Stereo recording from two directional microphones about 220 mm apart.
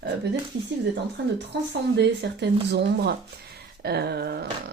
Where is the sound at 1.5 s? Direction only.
50° right (ahead or behind).